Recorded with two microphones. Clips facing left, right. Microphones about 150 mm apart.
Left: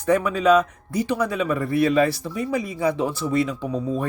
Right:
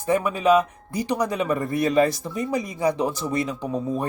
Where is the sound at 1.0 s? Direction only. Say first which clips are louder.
Left 1 dB; 40° right (ahead or behind).